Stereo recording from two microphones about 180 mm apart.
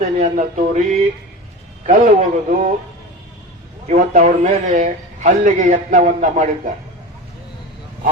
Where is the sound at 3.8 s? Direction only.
45° right (ahead or behind).